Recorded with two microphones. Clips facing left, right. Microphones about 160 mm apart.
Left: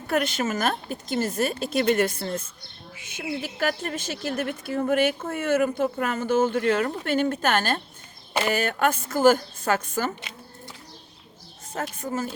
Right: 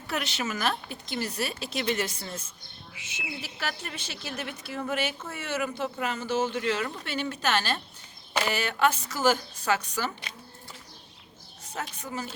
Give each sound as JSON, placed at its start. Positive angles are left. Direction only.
{"t": 0.1, "sound": "a woman's voice", "side_deg": 50}
{"t": 11.7, "sound": "a woman's voice", "side_deg": 50}